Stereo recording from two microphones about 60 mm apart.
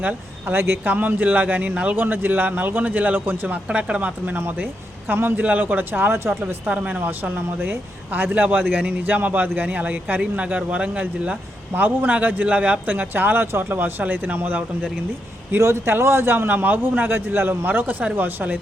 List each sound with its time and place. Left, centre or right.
0.0 s speech: right
0.5 s speech: right
0.9 s a man's voice: right
2.0 s a man's voice: right
6.4 s a man's voice: right
15.5 s a man's voice: right